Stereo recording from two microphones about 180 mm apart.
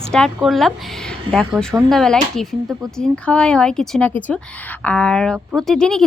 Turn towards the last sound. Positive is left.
turn(degrees=5)  # may be behind; listen again after turning